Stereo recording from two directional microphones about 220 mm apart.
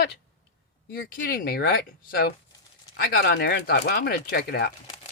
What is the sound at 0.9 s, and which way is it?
Speech, 40° left (ahead or behind).